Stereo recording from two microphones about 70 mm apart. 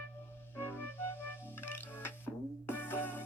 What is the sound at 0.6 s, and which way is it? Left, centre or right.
Music, left.